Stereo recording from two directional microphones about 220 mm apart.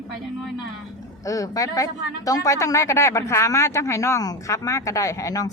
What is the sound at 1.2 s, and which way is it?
Speech, 15° left (ahead or behind).